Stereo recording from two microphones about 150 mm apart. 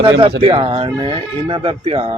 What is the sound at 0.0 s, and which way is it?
Speech, 40° right (ahead or behind).